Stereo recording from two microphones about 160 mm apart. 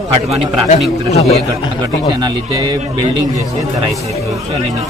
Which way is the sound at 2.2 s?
25° right (ahead or behind).